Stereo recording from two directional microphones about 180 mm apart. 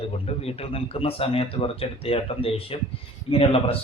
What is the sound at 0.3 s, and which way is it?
A man's voice, 35° left (ahead or behind).